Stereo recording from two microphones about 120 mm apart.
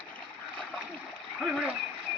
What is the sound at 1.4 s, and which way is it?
Splash, 10° right (ahead or behind).